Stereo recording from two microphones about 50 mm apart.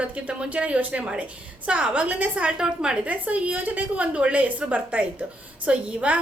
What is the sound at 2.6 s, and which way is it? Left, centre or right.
Speech, centre.